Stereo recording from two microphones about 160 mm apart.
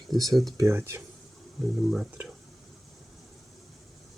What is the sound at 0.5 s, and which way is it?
Speech, 15° right (ahead or behind).